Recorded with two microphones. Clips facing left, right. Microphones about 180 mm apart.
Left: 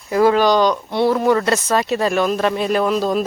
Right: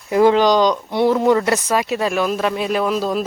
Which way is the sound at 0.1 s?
20° right (ahead or behind).